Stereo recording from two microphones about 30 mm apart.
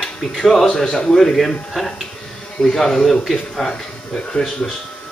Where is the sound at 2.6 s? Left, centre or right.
Left.